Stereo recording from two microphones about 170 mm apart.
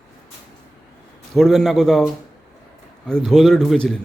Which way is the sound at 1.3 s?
Centre (ahead or behind).